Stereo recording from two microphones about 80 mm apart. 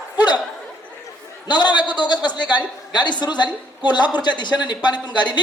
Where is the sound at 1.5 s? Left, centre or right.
Left.